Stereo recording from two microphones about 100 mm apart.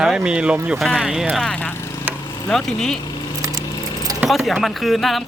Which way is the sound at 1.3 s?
10° left (ahead or behind).